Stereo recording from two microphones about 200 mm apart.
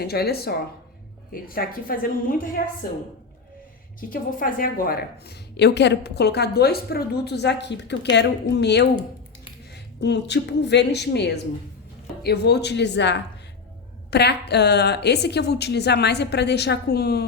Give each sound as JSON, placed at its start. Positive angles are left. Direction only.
{"t": 0.0, "sound": "a woman's voice", "side_deg": 50}
{"t": 4.1, "sound": "a woman's voice", "side_deg": 45}